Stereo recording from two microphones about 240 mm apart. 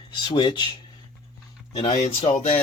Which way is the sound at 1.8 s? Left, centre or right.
Left.